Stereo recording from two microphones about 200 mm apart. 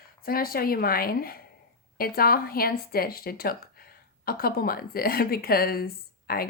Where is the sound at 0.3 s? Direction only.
45° left (ahead or behind).